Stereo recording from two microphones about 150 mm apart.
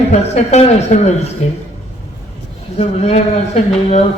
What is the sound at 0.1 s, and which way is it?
Speech, 50° left (ahead or behind).